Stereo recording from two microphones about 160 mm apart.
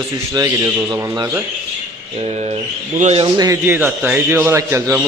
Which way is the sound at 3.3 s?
20° right (ahead or behind).